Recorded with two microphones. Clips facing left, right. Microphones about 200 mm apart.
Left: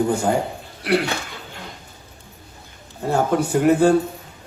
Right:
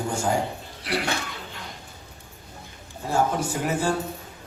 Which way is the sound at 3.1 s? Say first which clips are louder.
Left 5 dB; 60° left (ahead or behind).